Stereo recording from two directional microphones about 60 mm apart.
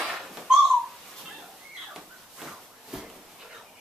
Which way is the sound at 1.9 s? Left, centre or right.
Centre.